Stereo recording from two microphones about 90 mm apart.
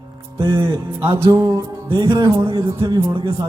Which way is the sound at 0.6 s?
30° right (ahead or behind).